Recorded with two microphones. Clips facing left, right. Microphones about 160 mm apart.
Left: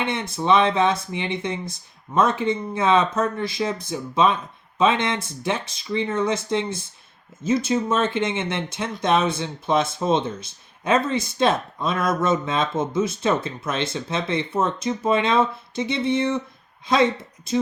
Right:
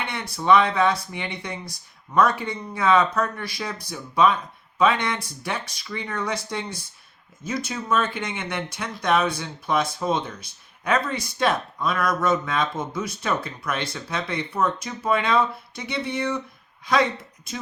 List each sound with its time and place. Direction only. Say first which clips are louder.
0.0 s speech: left 4 dB; 20° left (ahead or behind)